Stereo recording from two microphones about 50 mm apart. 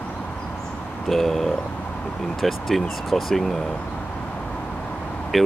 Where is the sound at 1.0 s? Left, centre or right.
Centre.